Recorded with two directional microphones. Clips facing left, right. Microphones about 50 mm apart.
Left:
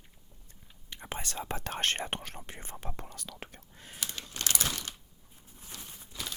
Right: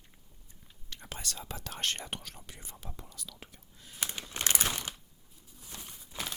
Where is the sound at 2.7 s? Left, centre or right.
Left.